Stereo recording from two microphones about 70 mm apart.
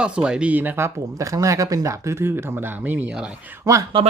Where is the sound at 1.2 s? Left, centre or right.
Right.